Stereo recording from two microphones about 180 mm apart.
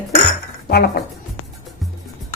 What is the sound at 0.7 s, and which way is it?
Speech, 60° left (ahead or behind).